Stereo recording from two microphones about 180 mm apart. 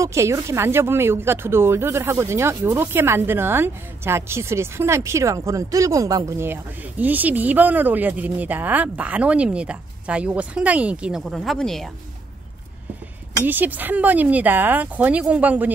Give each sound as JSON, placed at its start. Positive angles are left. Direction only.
{"t": 0.0, "sound": "speech", "side_deg": -15}
{"t": 13.5, "sound": "speech", "side_deg": -10}